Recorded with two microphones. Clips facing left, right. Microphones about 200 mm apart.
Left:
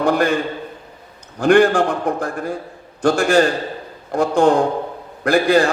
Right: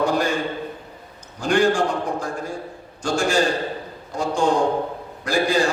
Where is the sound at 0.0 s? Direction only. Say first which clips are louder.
Left 4 dB; 60° left (ahead or behind).